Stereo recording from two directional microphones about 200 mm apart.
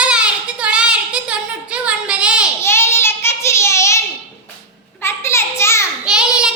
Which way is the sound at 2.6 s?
15° left (ahead or behind).